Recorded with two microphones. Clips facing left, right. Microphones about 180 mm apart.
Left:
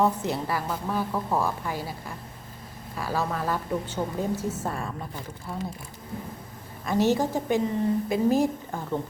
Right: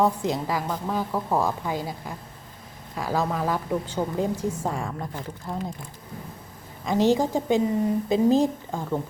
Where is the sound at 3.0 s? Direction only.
15° right (ahead or behind).